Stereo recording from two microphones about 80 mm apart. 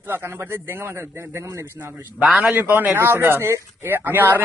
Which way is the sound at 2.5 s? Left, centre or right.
Right.